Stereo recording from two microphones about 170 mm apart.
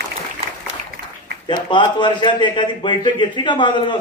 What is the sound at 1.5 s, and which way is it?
A man's voice, 25° left (ahead or behind).